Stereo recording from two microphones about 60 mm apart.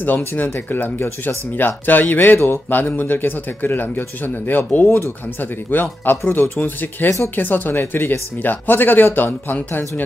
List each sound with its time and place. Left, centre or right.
0.0 s a man's voice: left